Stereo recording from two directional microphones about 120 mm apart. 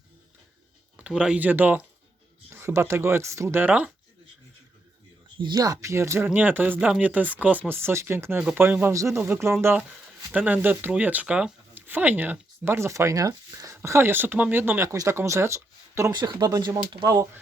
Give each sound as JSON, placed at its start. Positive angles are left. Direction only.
{"t": 0.9, "sound": "speech", "side_deg": -10}
{"t": 5.4, "sound": "speech", "side_deg": -35}
{"t": 16.1, "sound": "speech", "side_deg": -35}